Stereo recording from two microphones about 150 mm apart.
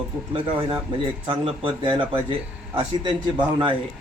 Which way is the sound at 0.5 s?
35° right (ahead or behind).